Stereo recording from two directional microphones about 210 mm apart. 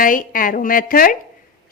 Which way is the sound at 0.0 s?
40° left (ahead or behind).